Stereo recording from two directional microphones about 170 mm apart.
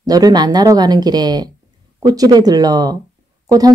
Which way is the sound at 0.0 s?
20° right (ahead or behind).